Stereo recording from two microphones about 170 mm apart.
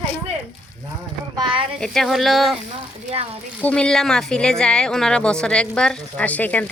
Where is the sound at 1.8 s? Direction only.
Centre (ahead or behind).